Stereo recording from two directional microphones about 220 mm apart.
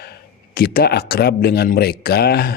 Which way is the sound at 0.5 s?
45° left (ahead or behind).